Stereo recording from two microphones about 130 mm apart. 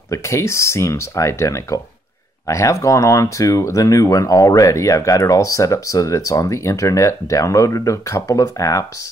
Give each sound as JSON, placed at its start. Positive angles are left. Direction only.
{"t": 0.1, "sound": "speech", "side_deg": 20}